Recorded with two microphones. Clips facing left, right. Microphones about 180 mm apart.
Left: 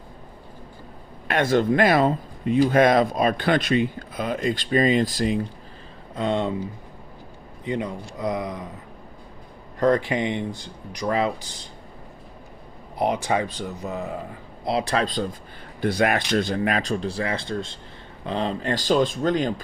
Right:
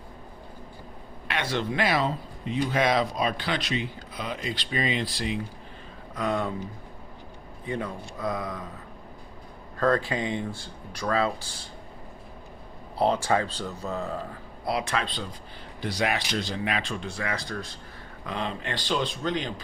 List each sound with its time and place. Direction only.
1.3 s speech: 45° left (ahead or behind)
6.1 s speech: 25° left (ahead or behind)
7.6 s a man's voice: 20° left (ahead or behind)
9.7 s speech: 20° left (ahead or behind)
13.0 s speech: 15° left (ahead or behind)
14.6 s speech: 30° left (ahead or behind); by 19.5 s 45° left (ahead or behind)